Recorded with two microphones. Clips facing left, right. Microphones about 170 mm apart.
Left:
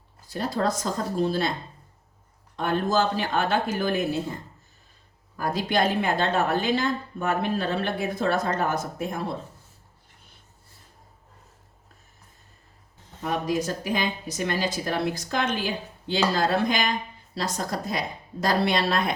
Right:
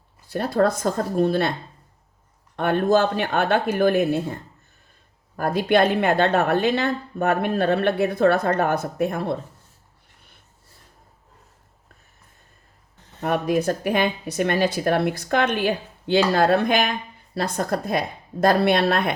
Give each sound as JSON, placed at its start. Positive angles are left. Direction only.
{"t": 0.3, "sound": "a woman's voice", "side_deg": -55}
{"t": 2.6, "sound": "a woman's voice", "side_deg": -60}
{"t": 5.4, "sound": "a woman's voice", "side_deg": -60}
{"t": 13.1, "sound": "a woman's voice", "side_deg": -60}